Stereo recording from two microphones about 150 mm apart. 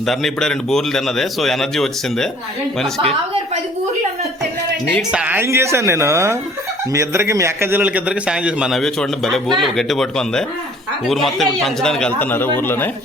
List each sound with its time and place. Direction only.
0.0 s speech: centre (ahead or behind)
5.1 s a man's voice: 10° right (ahead or behind); by 12.9 s 15° left (ahead or behind)